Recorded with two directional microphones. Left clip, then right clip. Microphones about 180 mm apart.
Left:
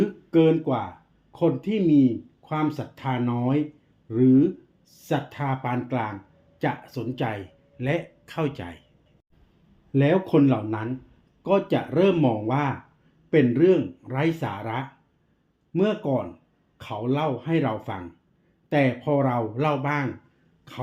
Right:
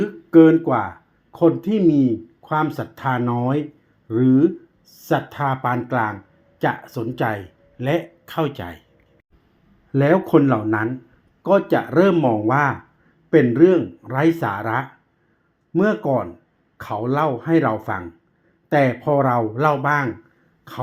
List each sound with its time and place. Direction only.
0.0 s a sound: 20° right (ahead or behind)
1.3 s speech: 20° right (ahead or behind)
9.9 s speech: 25° right (ahead or behind)